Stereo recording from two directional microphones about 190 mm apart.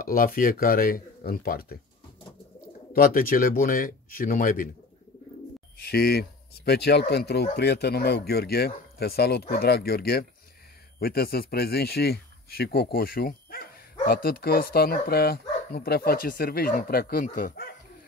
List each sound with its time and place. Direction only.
0.0 s speech: 45° left (ahead or behind)
2.9 s speech: 50° left (ahead or behind)
5.9 s speech: 55° left (ahead or behind)